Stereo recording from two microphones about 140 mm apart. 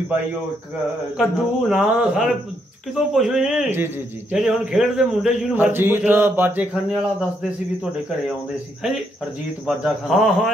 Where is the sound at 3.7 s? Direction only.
15° right (ahead or behind).